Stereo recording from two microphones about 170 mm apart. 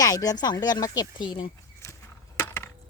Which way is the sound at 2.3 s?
15° left (ahead or behind).